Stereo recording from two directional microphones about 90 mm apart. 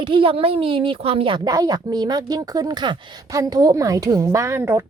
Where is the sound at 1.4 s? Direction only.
45° right (ahead or behind).